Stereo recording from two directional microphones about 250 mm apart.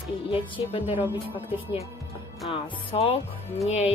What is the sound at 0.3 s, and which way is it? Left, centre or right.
Speech, left.